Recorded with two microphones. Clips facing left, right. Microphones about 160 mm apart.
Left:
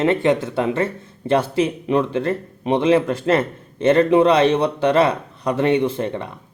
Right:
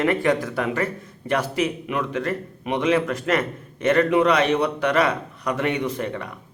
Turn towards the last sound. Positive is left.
turn(degrees=30)  # may be behind; listen again after turning